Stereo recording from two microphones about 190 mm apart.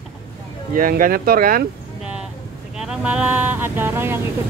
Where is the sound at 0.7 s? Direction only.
45° right (ahead or behind).